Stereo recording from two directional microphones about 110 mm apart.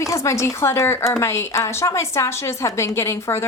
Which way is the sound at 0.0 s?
30° left (ahead or behind).